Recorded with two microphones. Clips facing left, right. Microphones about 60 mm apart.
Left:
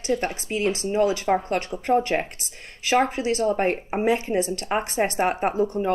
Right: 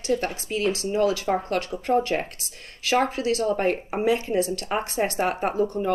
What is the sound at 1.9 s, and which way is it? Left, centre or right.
A woman's voice, centre.